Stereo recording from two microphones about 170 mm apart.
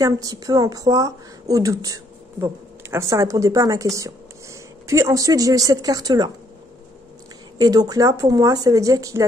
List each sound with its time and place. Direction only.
0.0 s a woman's voice: 20° right (ahead or behind)
7.5 s a woman's voice: 20° right (ahead or behind)